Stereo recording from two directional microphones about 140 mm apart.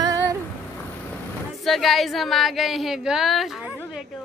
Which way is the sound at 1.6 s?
Centre (ahead or behind).